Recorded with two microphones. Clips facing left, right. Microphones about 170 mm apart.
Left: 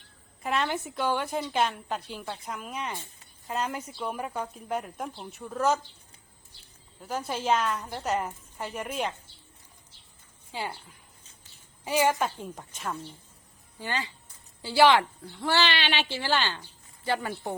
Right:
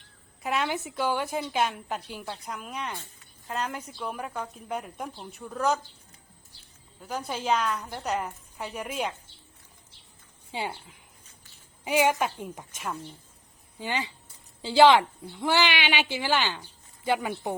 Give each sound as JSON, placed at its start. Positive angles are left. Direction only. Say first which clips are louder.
{"t": 0.4, "sound": "a woman's voice", "louder": "even", "side_deg": 0}
{"t": 7.0, "sound": "a woman's voice", "louder": "left 1 dB", "side_deg": 0}
{"t": 10.5, "sound": "speech", "louder": "right 2 dB", "side_deg": -20}
{"t": 11.9, "sound": "speech", "louder": "right 1 dB", "side_deg": -15}